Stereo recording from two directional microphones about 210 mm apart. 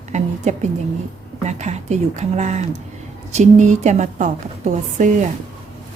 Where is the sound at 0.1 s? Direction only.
35° right (ahead or behind).